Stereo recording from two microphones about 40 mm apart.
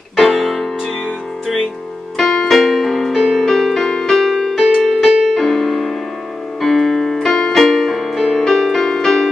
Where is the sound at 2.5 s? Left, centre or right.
Centre.